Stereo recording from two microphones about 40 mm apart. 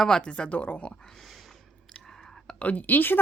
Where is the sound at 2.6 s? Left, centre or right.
Left.